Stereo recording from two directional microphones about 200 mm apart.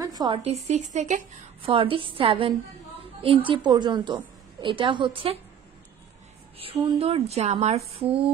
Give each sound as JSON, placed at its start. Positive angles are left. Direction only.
{"t": 0.0, "sound": "speech", "side_deg": -20}
{"t": 6.6, "sound": "speech", "side_deg": -30}